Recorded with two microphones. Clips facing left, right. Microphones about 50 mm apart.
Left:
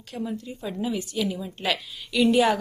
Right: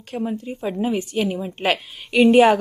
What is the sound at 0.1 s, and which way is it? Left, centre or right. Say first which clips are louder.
A woman's voice: right 6 dB; right.